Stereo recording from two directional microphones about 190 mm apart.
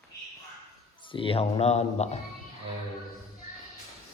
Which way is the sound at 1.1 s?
30° left (ahead or behind).